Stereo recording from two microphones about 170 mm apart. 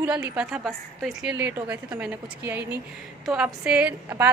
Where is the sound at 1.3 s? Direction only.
15° right (ahead or behind).